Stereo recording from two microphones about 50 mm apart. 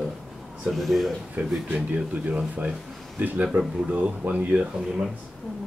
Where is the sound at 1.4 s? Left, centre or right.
Right.